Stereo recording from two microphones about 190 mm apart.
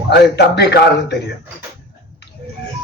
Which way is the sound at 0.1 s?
60° left (ahead or behind).